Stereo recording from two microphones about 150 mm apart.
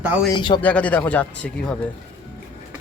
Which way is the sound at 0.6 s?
10° left (ahead or behind).